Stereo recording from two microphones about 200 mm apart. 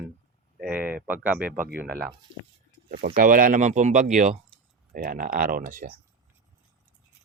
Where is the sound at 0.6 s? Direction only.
10° right (ahead or behind).